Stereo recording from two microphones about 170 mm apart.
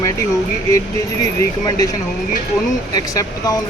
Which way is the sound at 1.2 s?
20° left (ahead or behind).